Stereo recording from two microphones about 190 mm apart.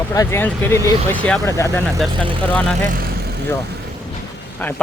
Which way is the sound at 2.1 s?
25° right (ahead or behind).